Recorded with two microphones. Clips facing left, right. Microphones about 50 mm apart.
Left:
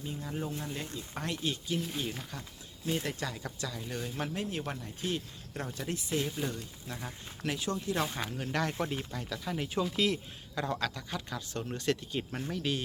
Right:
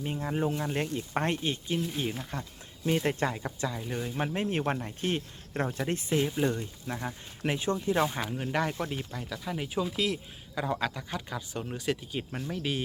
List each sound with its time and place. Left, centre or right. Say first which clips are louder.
0.0 s speech: right 7 dB; right
1.4 s speech: right 3 dB; right
4.3 s speech: right 6 dB; right
6.1 s speech: right 6 dB; centre
6.5 s speech: right 7 dB; right
8.2 s speech: right 3 dB; centre